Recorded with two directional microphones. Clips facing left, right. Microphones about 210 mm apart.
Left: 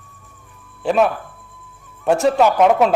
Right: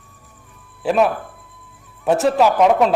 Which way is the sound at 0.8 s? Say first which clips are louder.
Even; centre (ahead or behind).